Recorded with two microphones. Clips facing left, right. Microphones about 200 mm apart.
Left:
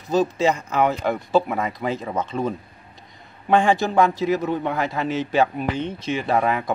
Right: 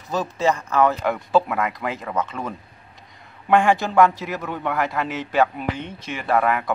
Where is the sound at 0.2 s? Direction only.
15° left (ahead or behind).